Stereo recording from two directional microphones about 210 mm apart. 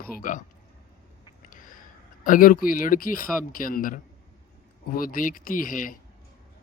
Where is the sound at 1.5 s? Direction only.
40° left (ahead or behind).